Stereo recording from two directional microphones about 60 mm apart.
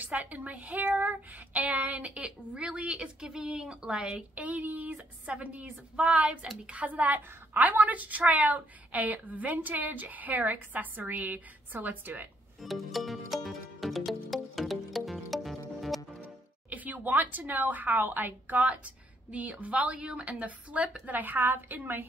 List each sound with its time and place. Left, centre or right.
0.0 s speech: right
12.6 s music: centre
16.7 s speech: right